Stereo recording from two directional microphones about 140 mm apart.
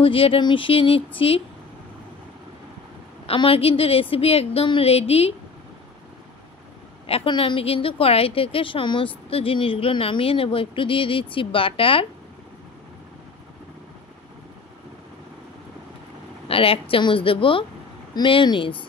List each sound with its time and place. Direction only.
0.0 s a woman's voice: 40° left (ahead or behind)
3.3 s a woman's voice: 40° left (ahead or behind)
7.1 s a woman's voice: 40° left (ahead or behind)
16.4 s a woman's voice: 40° left (ahead or behind)